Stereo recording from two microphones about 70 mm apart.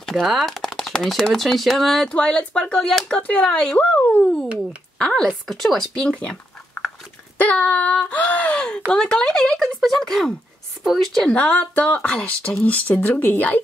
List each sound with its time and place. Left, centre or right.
0.0 s speech: centre
2.0 s speech: centre
3.2 s a sound: left
3.4 s speech: centre
4.9 s a woman's voice: centre
7.3 s a sound: left
8.5 s a woman's voice: centre
11.2 s speech: centre
12.6 s a sound: left